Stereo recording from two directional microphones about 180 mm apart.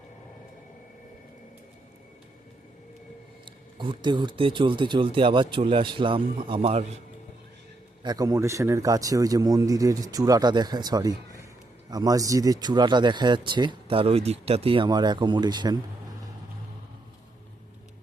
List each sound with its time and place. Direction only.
3.4 s speech: 25° right (ahead or behind)
8.0 s speech: 20° right (ahead or behind)